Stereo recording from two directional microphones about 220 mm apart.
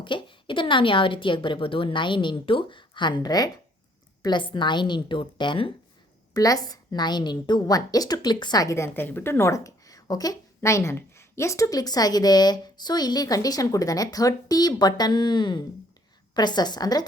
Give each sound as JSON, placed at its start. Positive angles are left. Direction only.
{"t": 0.0, "sound": "a woman's voice", "side_deg": 20}